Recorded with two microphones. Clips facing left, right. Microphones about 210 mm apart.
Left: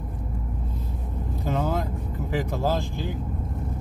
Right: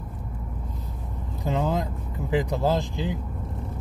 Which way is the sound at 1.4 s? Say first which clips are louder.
Right 1 dB; 15° right (ahead or behind).